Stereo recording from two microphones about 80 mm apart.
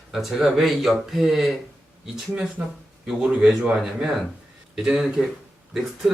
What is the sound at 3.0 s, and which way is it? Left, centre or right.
Speech, centre.